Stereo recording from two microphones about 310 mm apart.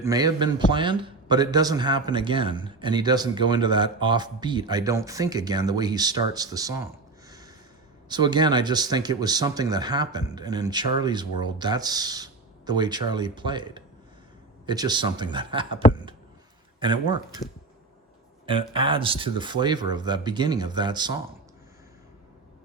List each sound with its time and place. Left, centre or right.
0.0 s a man's voice: centre
7.3 s snort: centre
8.1 s a man's voice: centre
15.8 s speech: left
16.8 s a man's voice: centre
18.4 s a man's voice: centre